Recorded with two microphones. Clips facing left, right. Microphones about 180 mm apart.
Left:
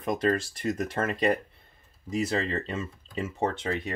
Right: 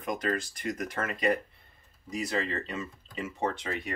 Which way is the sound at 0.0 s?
30° left (ahead or behind).